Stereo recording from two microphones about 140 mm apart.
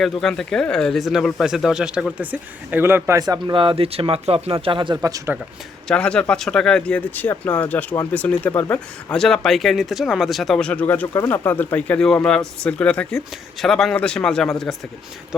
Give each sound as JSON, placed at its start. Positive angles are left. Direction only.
{"t": 0.0, "sound": "speech", "side_deg": 5}
{"t": 4.9, "sound": "speech", "side_deg": -20}
{"t": 5.9, "sound": "speech", "side_deg": 5}